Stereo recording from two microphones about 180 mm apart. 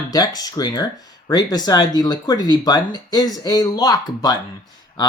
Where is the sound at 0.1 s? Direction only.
20° left (ahead or behind).